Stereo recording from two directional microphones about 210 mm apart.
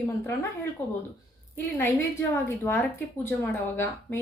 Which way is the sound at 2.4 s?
10° left (ahead or behind).